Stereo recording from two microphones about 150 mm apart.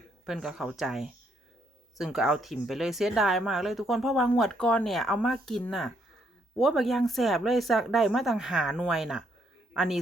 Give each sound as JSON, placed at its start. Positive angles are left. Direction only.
{"t": 0.3, "sound": "speech", "side_deg": 0}